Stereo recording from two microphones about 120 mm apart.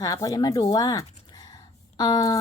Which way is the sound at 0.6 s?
35° left (ahead or behind).